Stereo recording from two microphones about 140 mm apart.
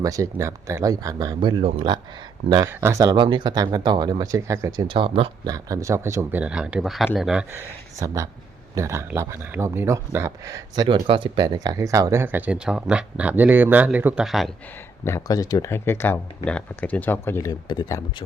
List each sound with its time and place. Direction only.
0.0 s speech: 25° right (ahead or behind); by 2.0 s 40° right (ahead or behind)
2.6 s speech: 20° right (ahead or behind)
4.9 s speech: 40° right (ahead or behind)
5.5 s speech: 25° right (ahead or behind)
6.4 s speech: 5° right (ahead or behind)
7.5 s speech: 20° right (ahead or behind)
11.0 s speech: 35° right (ahead or behind); by 14.5 s centre (ahead or behind)
15.0 s speech: 20° left (ahead or behind)